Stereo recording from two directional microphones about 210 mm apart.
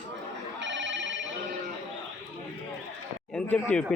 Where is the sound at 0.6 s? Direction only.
60° right (ahead or behind).